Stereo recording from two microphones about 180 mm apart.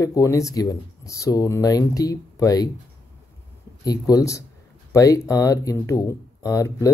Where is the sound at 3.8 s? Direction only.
20° left (ahead or behind).